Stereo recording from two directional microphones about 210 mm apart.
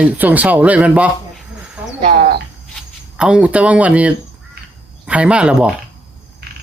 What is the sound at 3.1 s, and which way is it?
Speech, 5° right (ahead or behind).